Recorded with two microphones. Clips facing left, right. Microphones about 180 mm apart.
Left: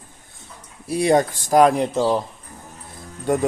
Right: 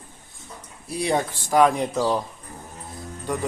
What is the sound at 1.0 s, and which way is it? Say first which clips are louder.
Speech: left 6 dB; 45° left (ahead or behind).